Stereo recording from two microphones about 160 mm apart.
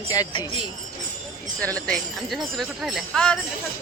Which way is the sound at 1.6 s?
5° left (ahead or behind).